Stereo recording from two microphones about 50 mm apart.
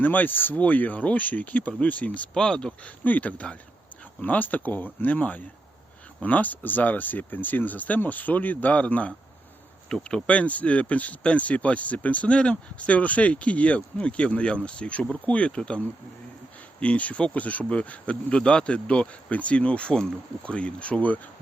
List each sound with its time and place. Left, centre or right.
0.0 s speech: left
2.3 s speech: centre
2.8 s speech: left
9.9 s speech: centre
10.2 s speech: left
16.8 s speech: left